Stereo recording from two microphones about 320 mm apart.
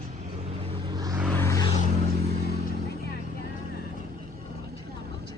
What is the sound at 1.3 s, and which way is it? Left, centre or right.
Vehicle, centre.